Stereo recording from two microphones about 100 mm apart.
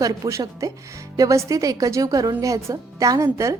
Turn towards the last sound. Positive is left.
turn(degrees=-30)  # may be behind; listen again after turning